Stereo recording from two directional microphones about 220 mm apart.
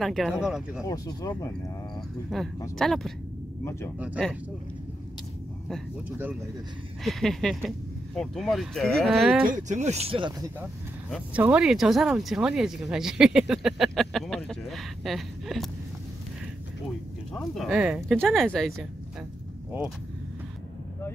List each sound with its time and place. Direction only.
0.0 s speech: centre (ahead or behind)
0.8 s speech: 15° left (ahead or behind)
2.2 s speech: centre (ahead or behind)
5.7 s speech: 10° right (ahead or behind)
9.4 s speech: 35° right (ahead or behind)
11.1 s speech: 5° right (ahead or behind)
17.3 s speech: centre (ahead or behind)